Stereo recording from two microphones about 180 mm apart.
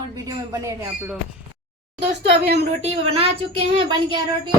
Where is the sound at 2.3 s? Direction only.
65° right (ahead or behind).